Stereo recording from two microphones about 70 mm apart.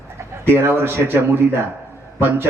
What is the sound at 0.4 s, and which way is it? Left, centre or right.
A man's voice, right.